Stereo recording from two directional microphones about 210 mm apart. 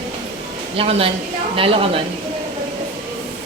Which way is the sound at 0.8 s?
25° right (ahead or behind).